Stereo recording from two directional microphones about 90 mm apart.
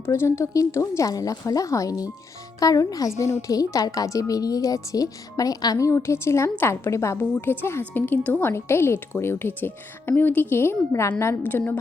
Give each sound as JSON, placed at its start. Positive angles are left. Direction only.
{"t": 0.0, "sound": "a woman's voice", "side_deg": 30}
{"t": 7.2, "sound": "a woman's voice", "side_deg": 20}